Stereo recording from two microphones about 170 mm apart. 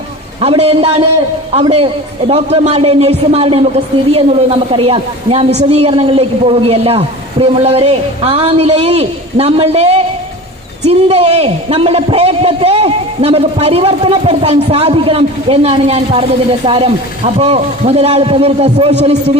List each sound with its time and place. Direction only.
0.3 s a man's voice: 35° right (ahead or behind)